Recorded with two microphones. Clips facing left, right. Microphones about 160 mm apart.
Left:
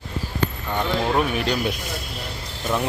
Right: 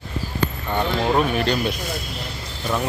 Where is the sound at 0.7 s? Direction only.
15° right (ahead or behind).